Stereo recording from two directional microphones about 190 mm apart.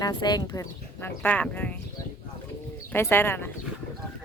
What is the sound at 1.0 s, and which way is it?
Speech, 10° left (ahead or behind).